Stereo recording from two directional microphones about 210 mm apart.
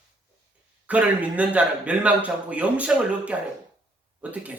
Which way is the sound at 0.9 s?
5° right (ahead or behind).